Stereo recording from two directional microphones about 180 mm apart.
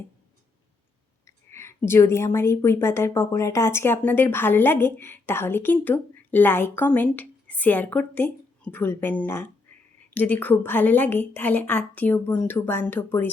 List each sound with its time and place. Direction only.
1.5 s a woman's voice: 15° left (ahead or behind)